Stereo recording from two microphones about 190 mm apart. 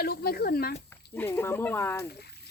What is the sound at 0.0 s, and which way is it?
Speech, 55° left (ahead or behind).